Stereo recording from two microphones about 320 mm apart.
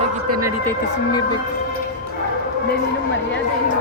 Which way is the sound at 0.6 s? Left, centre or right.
Centre.